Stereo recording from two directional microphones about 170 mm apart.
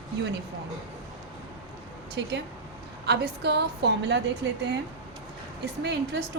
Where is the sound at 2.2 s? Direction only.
90° right.